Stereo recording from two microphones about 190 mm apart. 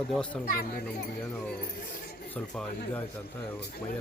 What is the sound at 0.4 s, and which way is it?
Speech, 50° left (ahead or behind).